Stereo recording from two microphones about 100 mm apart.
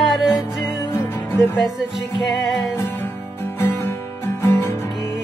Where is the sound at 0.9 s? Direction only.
25° left (ahead or behind).